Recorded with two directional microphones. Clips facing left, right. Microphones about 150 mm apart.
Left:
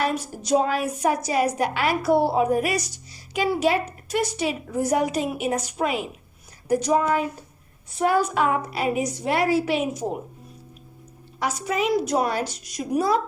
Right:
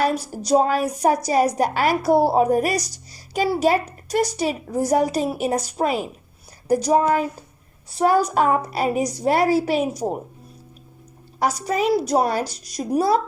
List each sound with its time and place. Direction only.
0.0 s a woman's voice: 35° right (ahead or behind)
11.3 s a woman's voice: 35° right (ahead or behind)